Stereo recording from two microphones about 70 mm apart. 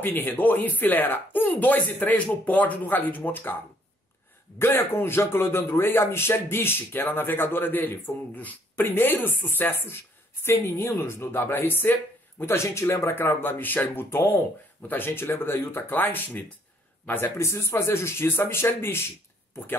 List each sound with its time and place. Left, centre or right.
0.0 s speech: left
4.6 s speech: left
17.4 s speech: left